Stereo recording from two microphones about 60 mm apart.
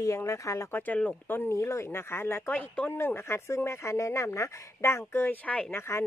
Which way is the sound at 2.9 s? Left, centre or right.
Left.